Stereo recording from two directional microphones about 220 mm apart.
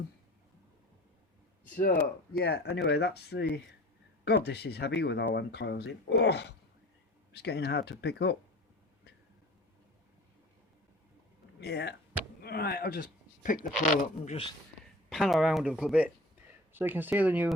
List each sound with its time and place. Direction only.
1.6 s a sound: 35° left (ahead or behind)
1.9 s speech: 5° left (ahead or behind)
2.4 s speech: 50° left (ahead or behind)
11.6 s speech: 50° left (ahead or behind)
15.1 s speech: centre (ahead or behind)